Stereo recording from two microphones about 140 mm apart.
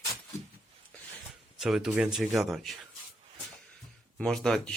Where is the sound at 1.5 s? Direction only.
Centre (ahead or behind).